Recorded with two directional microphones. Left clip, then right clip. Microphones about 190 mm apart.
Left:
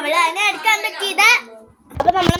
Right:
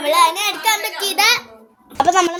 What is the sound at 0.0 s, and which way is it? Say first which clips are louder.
Child singing: right 2 dB; 15° right (ahead or behind).